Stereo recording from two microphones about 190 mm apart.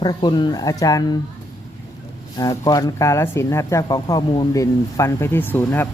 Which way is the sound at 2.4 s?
20° left (ahead or behind).